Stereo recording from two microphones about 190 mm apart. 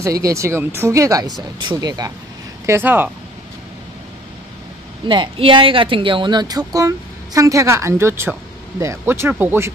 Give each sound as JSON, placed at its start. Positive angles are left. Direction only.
{"t": 0.0, "sound": "speech", "side_deg": -15}
{"t": 5.0, "sound": "speech", "side_deg": -25}